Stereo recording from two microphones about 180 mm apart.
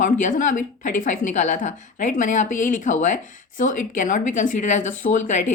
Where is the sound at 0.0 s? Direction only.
45° left (ahead or behind).